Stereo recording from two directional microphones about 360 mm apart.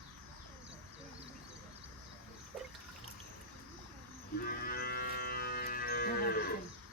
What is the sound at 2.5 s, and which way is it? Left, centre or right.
Water, centre.